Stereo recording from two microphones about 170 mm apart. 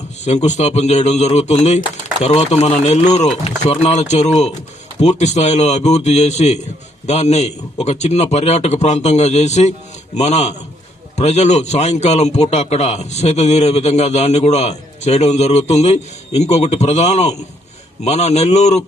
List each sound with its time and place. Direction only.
0.3 s a man's voice: 40° left (ahead or behind)